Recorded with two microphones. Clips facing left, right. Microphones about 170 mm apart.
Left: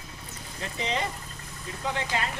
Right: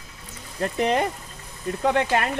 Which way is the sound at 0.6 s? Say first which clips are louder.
Right 9 dB; 55° right (ahead or behind).